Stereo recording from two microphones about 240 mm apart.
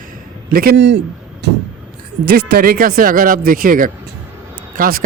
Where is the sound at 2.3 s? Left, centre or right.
Right.